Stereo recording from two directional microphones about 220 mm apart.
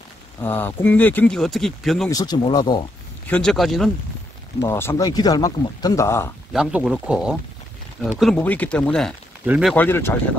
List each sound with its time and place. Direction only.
0.4 s speech: 10° left (ahead or behind)
2.0 s speech: 15° left (ahead or behind)
3.3 s speech: 5° left (ahead or behind)
4.6 s speech: 10° left (ahead or behind)
6.5 s speech: 5° right (ahead or behind)